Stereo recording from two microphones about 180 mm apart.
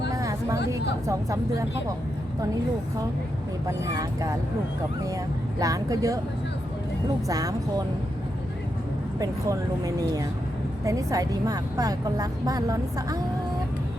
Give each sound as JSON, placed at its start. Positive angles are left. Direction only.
{"t": 0.1, "sound": "a sound", "side_deg": -20}
{"t": 1.0, "sound": "speech", "side_deg": -15}
{"t": 3.7, "sound": "a woman's voice", "side_deg": -20}
{"t": 7.3, "sound": "a woman's voice", "side_deg": -20}
{"t": 9.1, "sound": "a woman's voice", "side_deg": -20}